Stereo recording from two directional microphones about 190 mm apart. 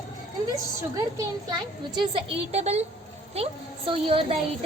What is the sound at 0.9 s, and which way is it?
Speech, 20° right (ahead or behind).